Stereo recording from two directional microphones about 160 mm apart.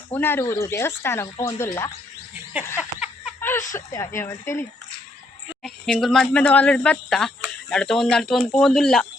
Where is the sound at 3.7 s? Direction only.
15° left (ahead or behind).